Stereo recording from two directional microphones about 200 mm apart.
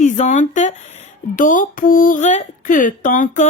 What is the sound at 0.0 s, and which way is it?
Speech, 40° left (ahead or behind).